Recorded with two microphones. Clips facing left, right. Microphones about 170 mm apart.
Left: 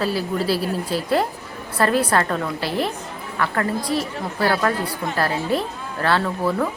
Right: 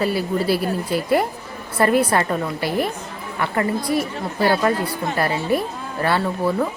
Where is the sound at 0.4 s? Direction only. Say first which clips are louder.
Right 2 dB; 50° right (ahead or behind).